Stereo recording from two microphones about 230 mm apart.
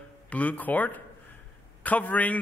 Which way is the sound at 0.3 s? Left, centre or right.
Centre.